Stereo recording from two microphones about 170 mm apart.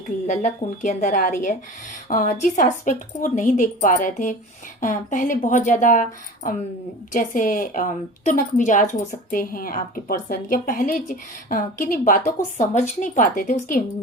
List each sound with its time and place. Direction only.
0.3 s speech: 45° left (ahead or behind)